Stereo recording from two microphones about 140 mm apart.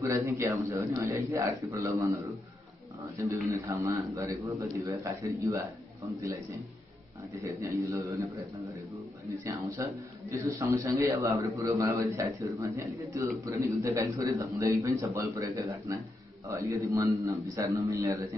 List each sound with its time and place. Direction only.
0.0 s a man's voice: 20° right (ahead or behind)
3.2 s a man's voice: 20° right (ahead or behind)
7.4 s a man's voice: 25° right (ahead or behind)
9.4 s a man's voice: 25° right (ahead or behind)